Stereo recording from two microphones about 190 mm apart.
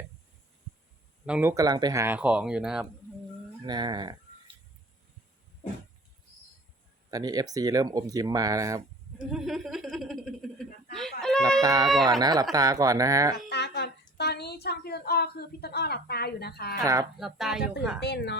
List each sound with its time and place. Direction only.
1.2 s speech: 10° right (ahead or behind)
3.7 s speech: 25° right (ahead or behind)
7.1 s speech: 20° right (ahead or behind)
9.3 s a sound: centre (ahead or behind)
11.6 s speech: 20° right (ahead or behind)
13.5 s a sound: 60° left (ahead or behind)
16.7 s speech: 15° right (ahead or behind)
17.2 s speech: centre (ahead or behind)
18.0 s speech: 60° left (ahead or behind)